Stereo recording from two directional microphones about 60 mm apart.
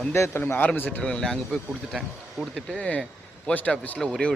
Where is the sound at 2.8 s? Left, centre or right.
Left.